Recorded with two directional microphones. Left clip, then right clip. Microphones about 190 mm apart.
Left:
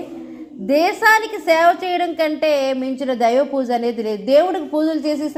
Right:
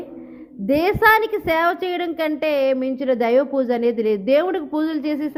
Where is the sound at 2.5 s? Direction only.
40° right (ahead or behind).